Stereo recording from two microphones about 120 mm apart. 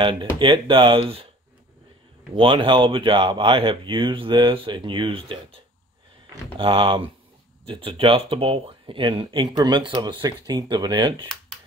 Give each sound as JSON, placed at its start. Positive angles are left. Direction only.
{"t": 0.0, "sound": "speech", "side_deg": -40}
{"t": 2.3, "sound": "speech", "side_deg": -45}
{"t": 6.6, "sound": "speech", "side_deg": -45}